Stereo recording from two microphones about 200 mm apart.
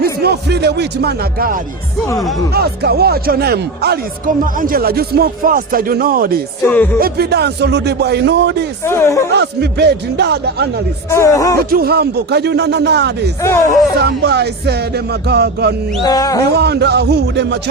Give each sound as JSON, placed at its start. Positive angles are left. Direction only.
{"t": 0.0, "sound": "speech", "side_deg": -50}
{"t": 4.4, "sound": "speech", "side_deg": -45}
{"t": 6.6, "sound": "speech", "side_deg": 10}
{"t": 7.0, "sound": "music", "side_deg": -55}
{"t": 8.8, "sound": "speech", "side_deg": 10}
{"t": 9.3, "sound": "music", "side_deg": -55}
{"t": 11.1, "sound": "speech", "side_deg": 15}
{"t": 11.7, "sound": "music", "side_deg": -50}
{"t": 13.4, "sound": "speech", "side_deg": 15}
{"t": 14.0, "sound": "music", "side_deg": -55}
{"t": 16.0, "sound": "speech", "side_deg": 20}
{"t": 16.5, "sound": "music", "side_deg": -55}